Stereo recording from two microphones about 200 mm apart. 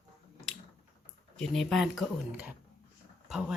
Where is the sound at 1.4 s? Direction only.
Centre (ahead or behind).